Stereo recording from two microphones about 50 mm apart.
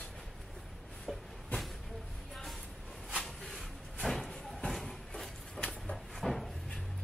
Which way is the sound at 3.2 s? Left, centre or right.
Centre.